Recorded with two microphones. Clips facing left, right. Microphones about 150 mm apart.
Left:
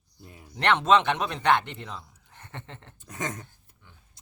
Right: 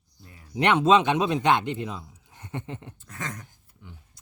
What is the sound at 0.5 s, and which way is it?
A man's voice, 10° right (ahead or behind).